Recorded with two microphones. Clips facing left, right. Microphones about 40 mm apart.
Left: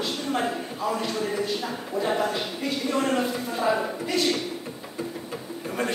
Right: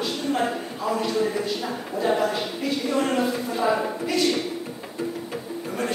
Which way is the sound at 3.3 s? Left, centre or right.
Centre.